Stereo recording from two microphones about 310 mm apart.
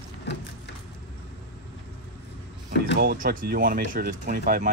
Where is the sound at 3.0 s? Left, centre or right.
Right.